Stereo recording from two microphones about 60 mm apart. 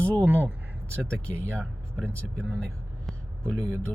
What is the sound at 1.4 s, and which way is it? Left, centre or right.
Speech, left.